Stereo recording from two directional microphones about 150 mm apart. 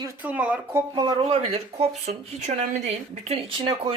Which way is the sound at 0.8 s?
25° right (ahead or behind).